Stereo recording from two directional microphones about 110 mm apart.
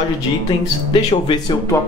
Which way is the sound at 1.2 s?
35° left (ahead or behind).